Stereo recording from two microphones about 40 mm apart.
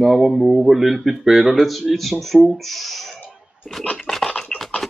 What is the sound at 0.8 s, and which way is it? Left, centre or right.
Speech, centre.